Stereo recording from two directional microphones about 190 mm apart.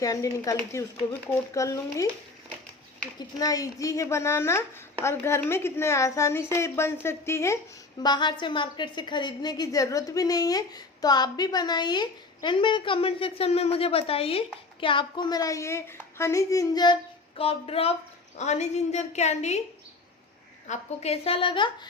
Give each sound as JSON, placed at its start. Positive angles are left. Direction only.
{"t": 0.0, "sound": "a woman's voice", "side_deg": 20}
{"t": 3.2, "sound": "a woman's voice", "side_deg": 20}
{"t": 20.7, "sound": "a woman's voice", "side_deg": 35}